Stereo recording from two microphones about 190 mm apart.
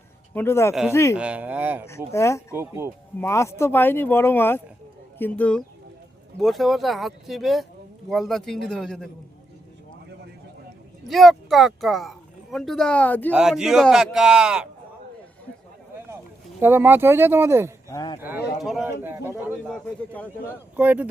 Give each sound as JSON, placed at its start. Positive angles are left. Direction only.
{"t": 0.3, "sound": "speech", "side_deg": 15}
{"t": 1.1, "sound": "speech", "side_deg": -5}
{"t": 1.9, "sound": "speech", "side_deg": 15}
{"t": 2.6, "sound": "speech", "side_deg": -15}
{"t": 3.2, "sound": "speech", "side_deg": 15}
{"t": 11.1, "sound": "speech", "side_deg": 0}
{"t": 13.3, "sound": "speech", "side_deg": -5}
{"t": 16.6, "sound": "speech", "side_deg": -10}
{"t": 17.8, "sound": "speech", "side_deg": 20}
{"t": 18.2, "sound": "speech", "side_deg": -10}
{"t": 19.0, "sound": "speech", "side_deg": -10}
{"t": 19.6, "sound": "speech", "side_deg": 5}
{"t": 20.7, "sound": "speech", "side_deg": -10}